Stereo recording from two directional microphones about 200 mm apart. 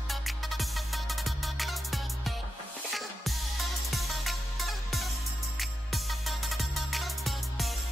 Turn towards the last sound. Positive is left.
turn(degrees=0)  # may be behind; listen again after turning